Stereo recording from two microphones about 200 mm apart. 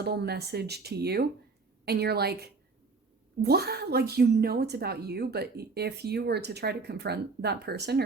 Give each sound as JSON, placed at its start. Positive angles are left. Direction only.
{"t": 0.0, "sound": "a woman's voice", "side_deg": -55}